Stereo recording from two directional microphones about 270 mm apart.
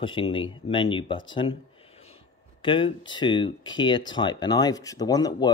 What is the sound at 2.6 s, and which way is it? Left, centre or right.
Speech, centre.